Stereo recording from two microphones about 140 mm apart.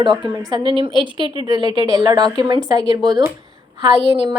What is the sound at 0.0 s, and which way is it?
A woman's voice, 35° right (ahead or behind).